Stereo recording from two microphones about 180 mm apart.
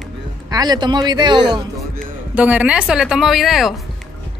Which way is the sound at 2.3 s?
10° right (ahead or behind).